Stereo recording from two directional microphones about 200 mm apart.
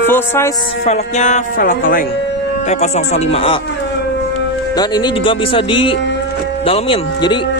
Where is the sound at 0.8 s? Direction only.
35° left (ahead or behind).